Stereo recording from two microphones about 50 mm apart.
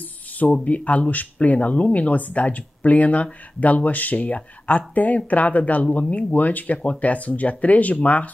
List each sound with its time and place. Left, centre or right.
0.7 s speech: left